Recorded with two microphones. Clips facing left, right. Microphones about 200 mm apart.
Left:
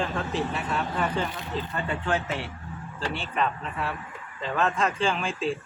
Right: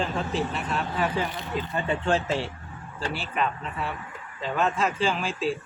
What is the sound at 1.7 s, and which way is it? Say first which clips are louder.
Speech: right 4 dB; 25° right (ahead or behind).